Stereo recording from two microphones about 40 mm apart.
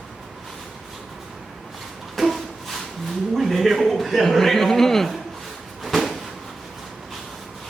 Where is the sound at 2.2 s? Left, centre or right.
Centre.